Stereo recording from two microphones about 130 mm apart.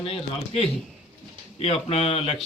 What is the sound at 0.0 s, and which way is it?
Speech, 45° left (ahead or behind).